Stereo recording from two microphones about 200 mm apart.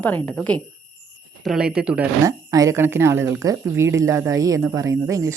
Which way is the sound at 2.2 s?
15° right (ahead or behind).